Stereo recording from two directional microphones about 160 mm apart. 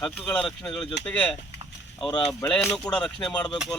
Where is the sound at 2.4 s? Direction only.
5° left (ahead or behind).